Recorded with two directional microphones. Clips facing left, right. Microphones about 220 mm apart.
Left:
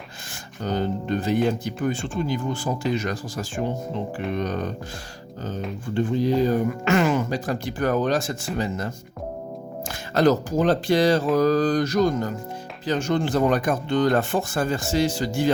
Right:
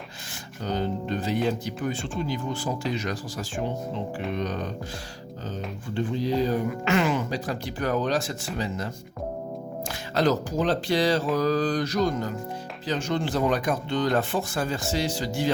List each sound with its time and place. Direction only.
0.6 s music: 50° left (ahead or behind)
1.6 s speech: 50° left (ahead or behind)
5.9 s speech: 50° left (ahead or behind)
10.2 s speech: 50° left (ahead or behind)